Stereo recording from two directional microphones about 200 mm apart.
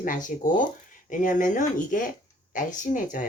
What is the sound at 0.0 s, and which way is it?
Speech, 40° left (ahead or behind).